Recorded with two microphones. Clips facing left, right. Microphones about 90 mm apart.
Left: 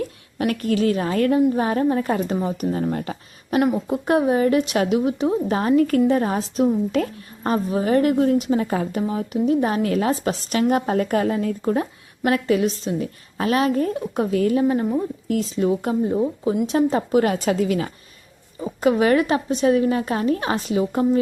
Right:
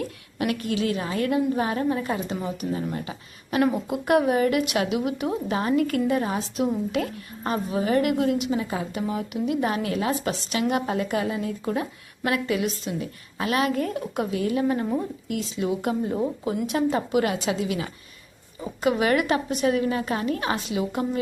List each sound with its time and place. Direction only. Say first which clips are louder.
0.3 s a woman's voice: left 5 dB; 40° left (ahead or behind)
3.8 s a woman's voice: left 2 dB; 30° left (ahead or behind)
11.6 s a woman's voice: left 5 dB; 35° left (ahead or behind)
14.6 s speech: left 4 dB; 25° left (ahead or behind)
15.3 s a woman's voice: left 7 dB; 40° left (ahead or behind)